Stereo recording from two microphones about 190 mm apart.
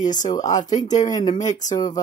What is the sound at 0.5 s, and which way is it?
Speech, 20° left (ahead or behind).